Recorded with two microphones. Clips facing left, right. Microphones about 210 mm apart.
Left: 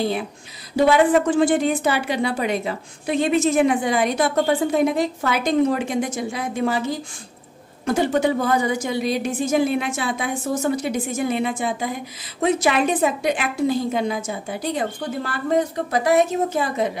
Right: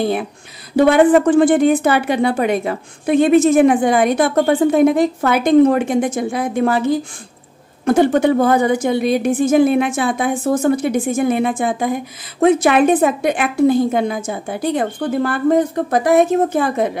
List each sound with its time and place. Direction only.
0.7 s a woman's voice: 55° right (ahead or behind)